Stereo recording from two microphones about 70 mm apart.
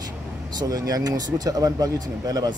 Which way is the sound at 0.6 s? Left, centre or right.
Right.